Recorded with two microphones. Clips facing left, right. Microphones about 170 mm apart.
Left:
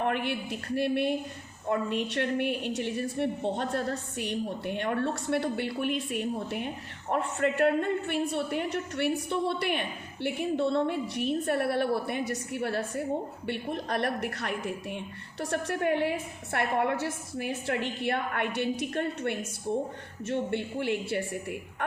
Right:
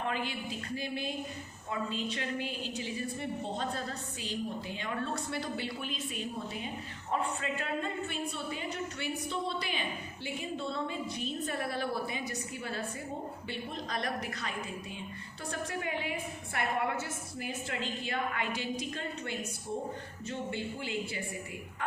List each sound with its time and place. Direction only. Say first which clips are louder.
0.0 s a woman's voice: left 6 dB; 65° left (ahead or behind)